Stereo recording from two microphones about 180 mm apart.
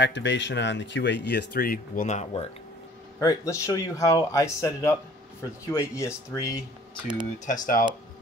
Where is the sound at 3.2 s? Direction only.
20° left (ahead or behind).